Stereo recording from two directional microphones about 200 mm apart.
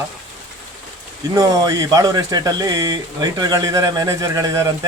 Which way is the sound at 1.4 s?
20° right (ahead or behind).